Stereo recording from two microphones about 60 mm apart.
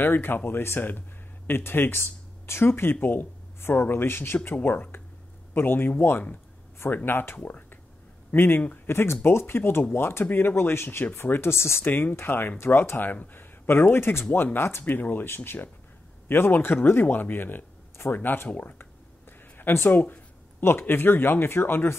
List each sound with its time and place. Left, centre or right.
0.0 s speech: left
11.8 s speech: left
19.5 s speech: left